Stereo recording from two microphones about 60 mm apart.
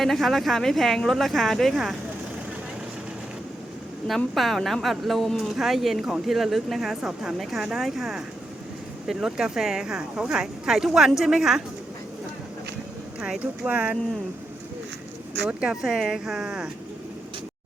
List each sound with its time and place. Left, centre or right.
0.0 s speech: centre
4.0 s speech: centre
13.4 s speech: right
15.7 s speech: centre